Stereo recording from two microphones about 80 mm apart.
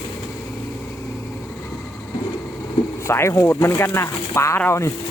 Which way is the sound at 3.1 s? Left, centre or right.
Left.